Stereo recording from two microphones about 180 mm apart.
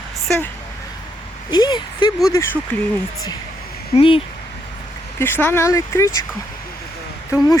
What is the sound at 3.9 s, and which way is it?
Speech, 30° left (ahead or behind).